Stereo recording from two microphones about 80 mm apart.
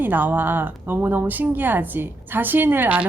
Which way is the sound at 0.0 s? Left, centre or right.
Right.